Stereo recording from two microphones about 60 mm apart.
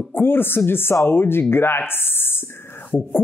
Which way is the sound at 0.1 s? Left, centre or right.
Left.